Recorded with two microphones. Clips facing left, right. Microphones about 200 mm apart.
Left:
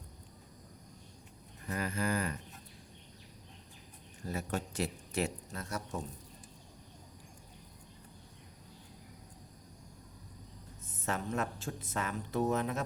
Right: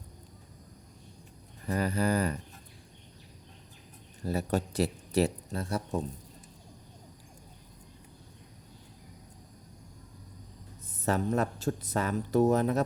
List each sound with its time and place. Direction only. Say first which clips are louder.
1.6 s speech: right 6 dB; 35° right (ahead or behind)
4.2 s speech: right 7 dB; 35° right (ahead or behind)
11.0 s speech: right 7 dB; 35° right (ahead or behind)